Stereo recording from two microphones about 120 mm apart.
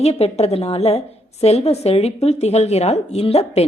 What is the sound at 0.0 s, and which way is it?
A woman's voice, 60° left (ahead or behind).